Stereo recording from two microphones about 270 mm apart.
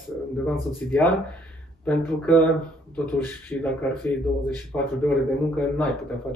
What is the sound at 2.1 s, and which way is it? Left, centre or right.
Speech, centre.